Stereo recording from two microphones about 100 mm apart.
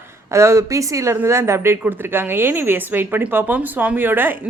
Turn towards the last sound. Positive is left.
turn(degrees=-20)  # may be behind; listen again after turning